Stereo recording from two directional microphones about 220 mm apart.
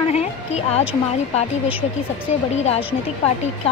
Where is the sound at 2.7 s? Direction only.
25° left (ahead or behind).